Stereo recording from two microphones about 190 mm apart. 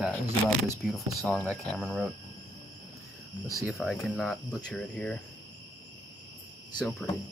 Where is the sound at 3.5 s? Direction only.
Centre (ahead or behind).